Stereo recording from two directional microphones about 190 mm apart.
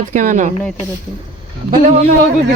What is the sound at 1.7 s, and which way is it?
Speech, 35° right (ahead or behind).